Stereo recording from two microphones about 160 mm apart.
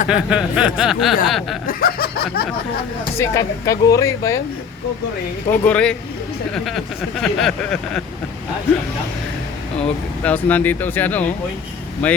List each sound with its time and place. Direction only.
0.1 s speech: 5° right (ahead or behind)
1.6 s a sound: 65° left (ahead or behind)
3.2 s speech: 20° left (ahead or behind)
5.5 s speech: 10° left (ahead or behind)
10.2 s speech: 10° left (ahead or behind)